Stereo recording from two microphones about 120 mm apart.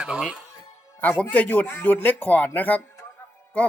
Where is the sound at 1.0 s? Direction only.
15° left (ahead or behind).